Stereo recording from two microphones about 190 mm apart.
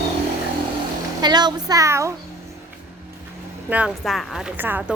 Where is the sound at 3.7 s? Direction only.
5° right (ahead or behind).